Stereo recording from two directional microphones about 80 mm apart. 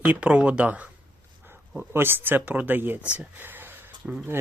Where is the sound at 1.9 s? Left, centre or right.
Right.